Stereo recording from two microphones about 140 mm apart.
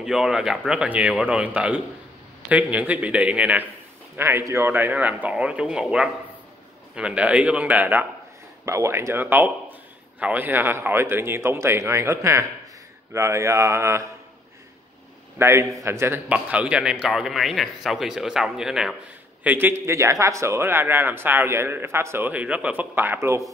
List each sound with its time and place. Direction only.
0.0 s a man's voice: 5° right (ahead or behind); by 14.0 s 20° right (ahead or behind)
15.3 s a man's voice: 20° right (ahead or behind); by 18.9 s 5° right (ahead or behind)
19.4 s speech: 15° right (ahead or behind)